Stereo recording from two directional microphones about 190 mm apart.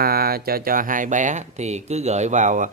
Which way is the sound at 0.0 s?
50° right (ahead or behind).